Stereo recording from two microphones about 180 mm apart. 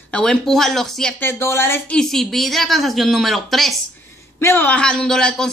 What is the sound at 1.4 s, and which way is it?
Speech, 15° left (ahead or behind).